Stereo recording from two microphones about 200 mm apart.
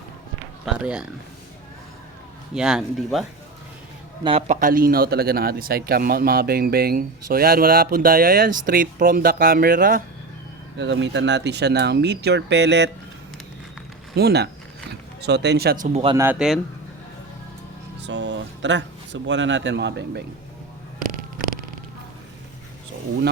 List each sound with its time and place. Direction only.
0.6 s speech: 5° right (ahead or behind)
2.6 s a man's voice: 5° right (ahead or behind)
4.2 s a man's voice: 30° right (ahead or behind); by 10.0 s 45° right (ahead or behind)
10.8 s speech: 60° right (ahead or behind)
14.2 s a man's voice: 55° right (ahead or behind)
16.1 s speech: 10° right (ahead or behind)
18.0 s speech: 65° right (ahead or behind)